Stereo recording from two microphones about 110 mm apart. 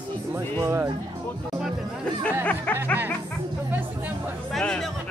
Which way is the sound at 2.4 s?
15° left (ahead or behind).